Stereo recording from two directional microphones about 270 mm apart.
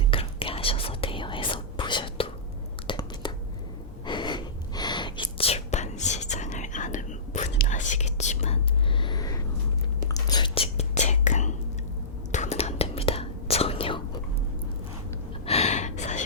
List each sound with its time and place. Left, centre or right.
0.1 s whispering: centre
2.8 s a sound: centre
4.0 s whispering: centre
15.4 s gasp: left